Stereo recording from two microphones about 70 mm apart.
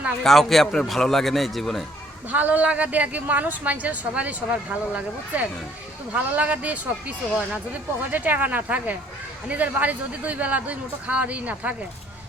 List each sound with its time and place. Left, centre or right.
0.2 s a man's voice: centre
2.3 s speech: right
8.1 s speech: right